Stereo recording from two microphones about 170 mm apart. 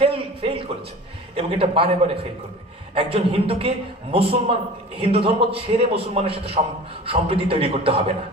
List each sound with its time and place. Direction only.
0.0 s a man's voice: 30° right (ahead or behind)